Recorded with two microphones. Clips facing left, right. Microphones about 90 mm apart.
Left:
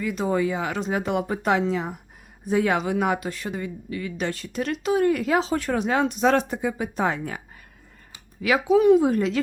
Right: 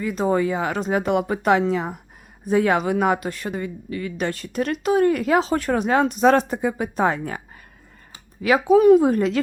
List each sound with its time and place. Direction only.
0.0 s speech: 40° right (ahead or behind)